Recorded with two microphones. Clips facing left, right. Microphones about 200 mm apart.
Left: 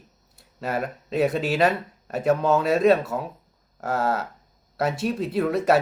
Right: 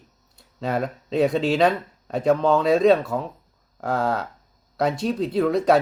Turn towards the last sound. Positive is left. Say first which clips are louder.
# right 2 dB
turn(degrees=5)  # may be behind; listen again after turning